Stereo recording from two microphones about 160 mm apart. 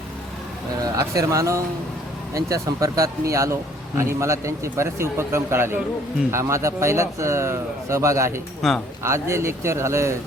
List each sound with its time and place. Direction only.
0.9 s speech: 20° right (ahead or behind)
8.6 s a man's voice: centre (ahead or behind)
9.0 s speech: 15° right (ahead or behind)